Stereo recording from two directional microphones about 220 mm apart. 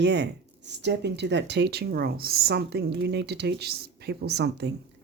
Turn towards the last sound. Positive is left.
turn(degrees=-50)  # may be behind; listen again after turning